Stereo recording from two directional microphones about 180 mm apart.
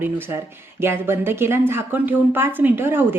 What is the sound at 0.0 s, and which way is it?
Speech, 15° right (ahead or behind).